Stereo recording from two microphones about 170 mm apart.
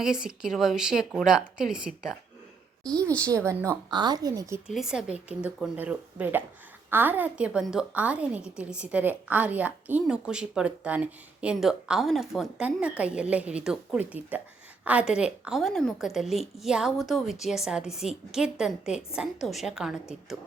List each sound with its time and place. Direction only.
0.0 s a woman's voice: 5° right (ahead or behind)
3.3 s a woman's voice: 20° right (ahead or behind)
4.7 s a woman's voice: 5° right (ahead or behind)